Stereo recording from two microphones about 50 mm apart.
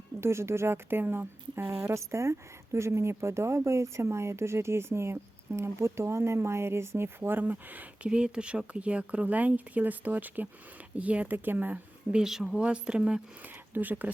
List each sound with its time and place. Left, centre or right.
0.2 s speech: right
1.9 s speech: right
8.1 s a woman's voice: centre
11.3 s speech: right
12.1 s speech: centre
12.5 s a woman's voice: centre
13.7 s speech: right